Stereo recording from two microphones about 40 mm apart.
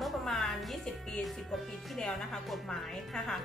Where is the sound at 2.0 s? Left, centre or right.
Centre.